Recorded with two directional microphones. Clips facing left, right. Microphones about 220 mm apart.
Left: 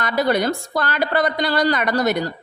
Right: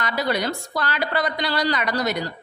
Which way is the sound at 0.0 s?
50° left (ahead or behind).